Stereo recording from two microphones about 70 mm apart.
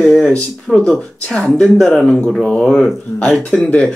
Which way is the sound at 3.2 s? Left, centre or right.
Centre.